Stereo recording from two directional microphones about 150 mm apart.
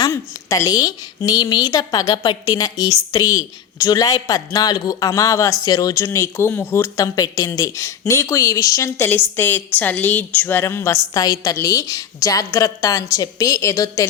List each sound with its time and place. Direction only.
0.0 s a woman's voice: 25° left (ahead or behind)